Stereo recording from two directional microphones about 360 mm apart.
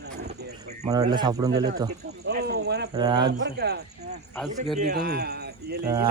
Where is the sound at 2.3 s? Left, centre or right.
Right.